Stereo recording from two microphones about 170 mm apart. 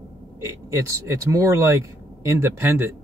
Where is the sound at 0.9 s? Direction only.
15° right (ahead or behind).